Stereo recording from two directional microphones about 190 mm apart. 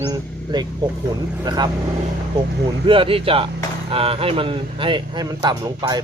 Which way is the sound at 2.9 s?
30° right (ahead or behind).